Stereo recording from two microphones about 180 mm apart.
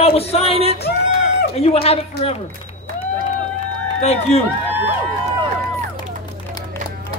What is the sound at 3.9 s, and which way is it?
Speech, 35° left (ahead or behind).